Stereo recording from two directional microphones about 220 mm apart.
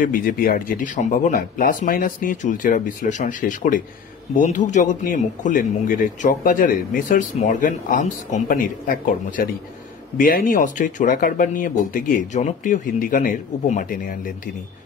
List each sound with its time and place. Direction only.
0.0 s speech: 40° left (ahead or behind)